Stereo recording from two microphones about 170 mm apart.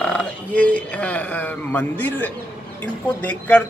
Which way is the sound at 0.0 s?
5° left (ahead or behind).